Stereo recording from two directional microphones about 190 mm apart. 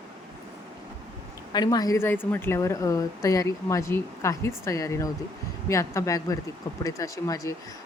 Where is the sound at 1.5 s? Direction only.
20° left (ahead or behind).